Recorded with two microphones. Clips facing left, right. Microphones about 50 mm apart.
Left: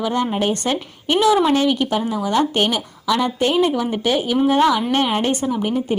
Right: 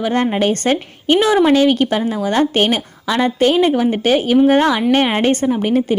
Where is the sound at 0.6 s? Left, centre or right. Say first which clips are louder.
Right 5 dB; right.